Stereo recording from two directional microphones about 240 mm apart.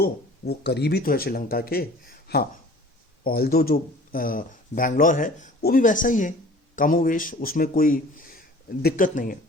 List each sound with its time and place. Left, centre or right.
0.0 s speech: left